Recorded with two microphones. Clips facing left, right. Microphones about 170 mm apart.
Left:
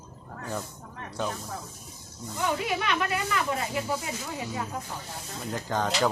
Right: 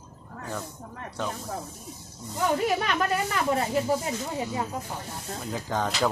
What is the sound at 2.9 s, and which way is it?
Speech, 40° right (ahead or behind).